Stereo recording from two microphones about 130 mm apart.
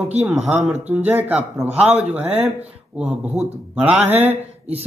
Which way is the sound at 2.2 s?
55° right (ahead or behind).